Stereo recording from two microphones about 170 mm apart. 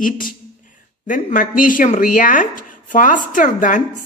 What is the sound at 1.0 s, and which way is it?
Speech, 50° left (ahead or behind).